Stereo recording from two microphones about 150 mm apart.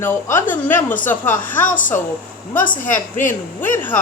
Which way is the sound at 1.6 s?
60° left (ahead or behind).